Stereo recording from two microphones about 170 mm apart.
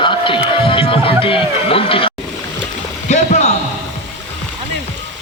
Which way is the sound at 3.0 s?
40° left (ahead or behind).